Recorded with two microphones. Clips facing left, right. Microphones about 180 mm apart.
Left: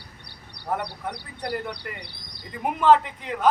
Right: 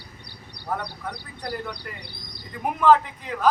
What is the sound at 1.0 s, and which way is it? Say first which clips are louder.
Speech: left 2 dB; 25° left (ahead or behind).